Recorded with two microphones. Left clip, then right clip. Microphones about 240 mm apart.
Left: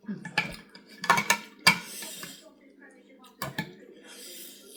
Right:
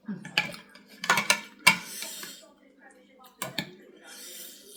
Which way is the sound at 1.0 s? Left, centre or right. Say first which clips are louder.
Even; centre.